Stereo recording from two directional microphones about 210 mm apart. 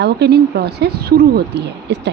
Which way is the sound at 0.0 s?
50° right (ahead or behind).